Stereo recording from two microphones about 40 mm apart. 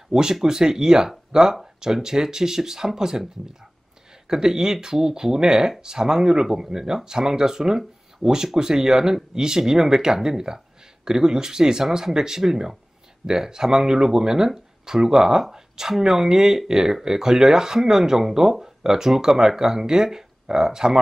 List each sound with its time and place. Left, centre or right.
0.1 s speech: centre
4.3 s speech: centre